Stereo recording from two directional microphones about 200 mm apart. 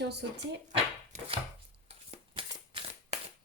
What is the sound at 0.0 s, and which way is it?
Speech, 60° right (ahead or behind).